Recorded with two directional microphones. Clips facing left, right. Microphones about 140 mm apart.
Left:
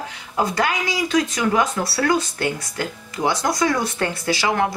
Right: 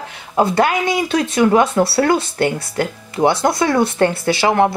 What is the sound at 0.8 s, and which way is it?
Speech, 60° right (ahead or behind).